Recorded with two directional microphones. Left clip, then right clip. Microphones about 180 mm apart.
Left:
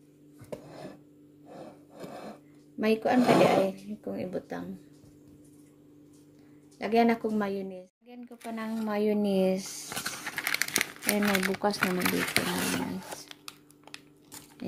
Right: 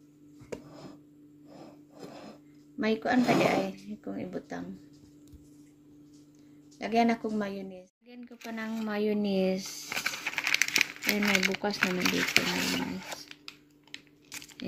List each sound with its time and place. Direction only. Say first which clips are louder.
2.8 s speech: left 2 dB; 5° left (ahead or behind)
6.8 s speech: left 2 dB; 5° left (ahead or behind)
10.0 s crumpling: right 2 dB; 20° left (ahead or behind)
12.1 s speech: right 2 dB; 20° left (ahead or behind)
14.6 s a sound: left 2 dB; centre (ahead or behind)